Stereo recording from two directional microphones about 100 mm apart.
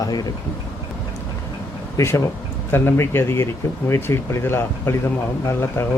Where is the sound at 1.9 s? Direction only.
30° left (ahead or behind).